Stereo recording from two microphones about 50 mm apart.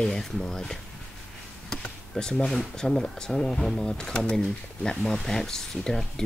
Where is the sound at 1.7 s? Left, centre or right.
Centre.